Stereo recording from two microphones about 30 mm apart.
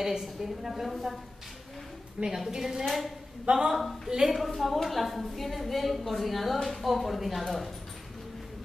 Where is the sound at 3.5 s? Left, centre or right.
Right.